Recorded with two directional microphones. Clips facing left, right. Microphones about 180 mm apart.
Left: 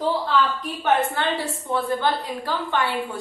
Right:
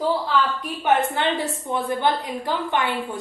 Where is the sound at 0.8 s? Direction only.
15° right (ahead or behind).